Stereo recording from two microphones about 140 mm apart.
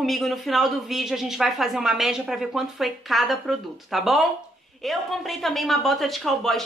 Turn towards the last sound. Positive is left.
turn(degrees=0)  # may be behind; listen again after turning